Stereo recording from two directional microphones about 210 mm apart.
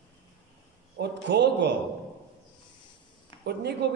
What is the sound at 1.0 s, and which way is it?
Speech, 55° right (ahead or behind).